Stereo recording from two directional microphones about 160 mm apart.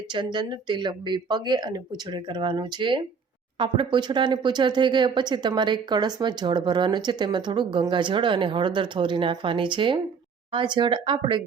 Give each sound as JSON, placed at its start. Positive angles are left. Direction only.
{"t": 0.1, "sound": "speech", "side_deg": -30}